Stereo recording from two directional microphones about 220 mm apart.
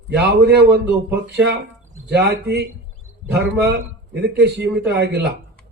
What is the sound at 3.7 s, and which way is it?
Speech, 50° right (ahead or behind).